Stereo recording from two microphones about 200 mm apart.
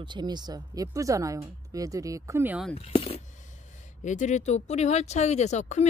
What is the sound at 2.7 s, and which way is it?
Speech, 30° left (ahead or behind).